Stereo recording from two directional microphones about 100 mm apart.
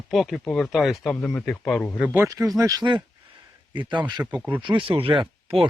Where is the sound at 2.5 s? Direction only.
35° right (ahead or behind).